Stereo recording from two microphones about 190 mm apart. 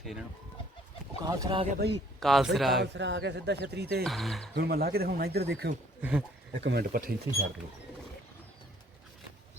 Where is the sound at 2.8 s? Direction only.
65° right (ahead or behind).